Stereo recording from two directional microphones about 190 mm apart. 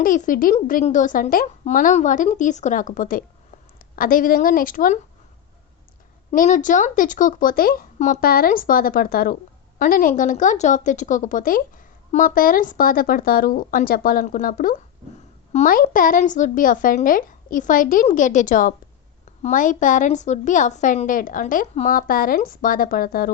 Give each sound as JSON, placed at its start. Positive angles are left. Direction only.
{"t": 0.0, "sound": "a woman's voice", "side_deg": 45}
{"t": 6.3, "sound": "a woman's voice", "side_deg": 45}